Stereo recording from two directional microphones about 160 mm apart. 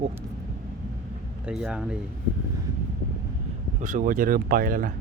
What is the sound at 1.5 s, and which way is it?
Speech, 5° right (ahead or behind).